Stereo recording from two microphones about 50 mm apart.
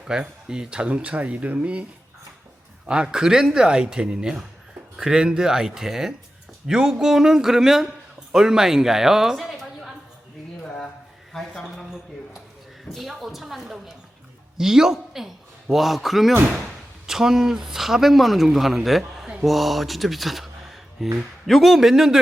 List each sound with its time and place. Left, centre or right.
0.1 s a woman's voice: centre
11.3 s a sound: centre
12.9 s a woman's voice: centre